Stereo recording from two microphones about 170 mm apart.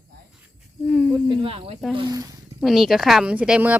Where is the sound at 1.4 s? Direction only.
35° right (ahead or behind).